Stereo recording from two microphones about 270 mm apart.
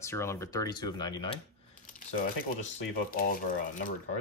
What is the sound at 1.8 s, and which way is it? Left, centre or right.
Speech, left.